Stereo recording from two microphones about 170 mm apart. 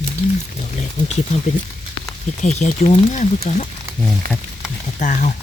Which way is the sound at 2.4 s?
45° left (ahead or behind).